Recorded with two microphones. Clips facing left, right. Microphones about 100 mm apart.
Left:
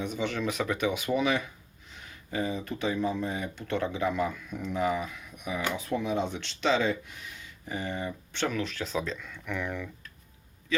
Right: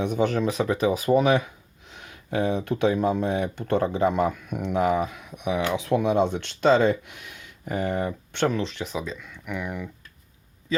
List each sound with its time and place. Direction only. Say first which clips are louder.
0.0 s speech: right 8 dB; 50° right (ahead or behind)
0.4 s speech: right 6 dB; 30° right (ahead or behind); by 1.5 s 50° right (ahead or behind)
2.0 s speech: right 6 dB; 60° right (ahead or behind)
8.4 s speech: right 5 dB; 25° right (ahead or behind)
8.8 s speech: right 1 dB; 10° right (ahead or behind)